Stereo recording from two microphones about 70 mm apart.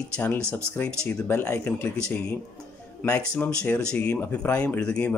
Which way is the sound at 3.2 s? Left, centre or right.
Centre.